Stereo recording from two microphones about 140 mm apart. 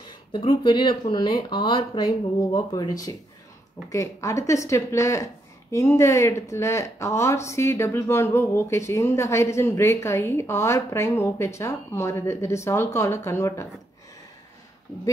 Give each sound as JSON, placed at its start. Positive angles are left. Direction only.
{"t": 0.5, "sound": "a woman's voice", "side_deg": 30}